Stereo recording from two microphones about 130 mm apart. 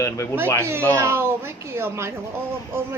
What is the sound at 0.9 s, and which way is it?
A child's voice, 20° right (ahead or behind).